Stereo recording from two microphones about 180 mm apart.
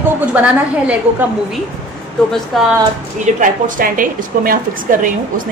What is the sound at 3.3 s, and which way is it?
A woman's voice, 45° right (ahead or behind).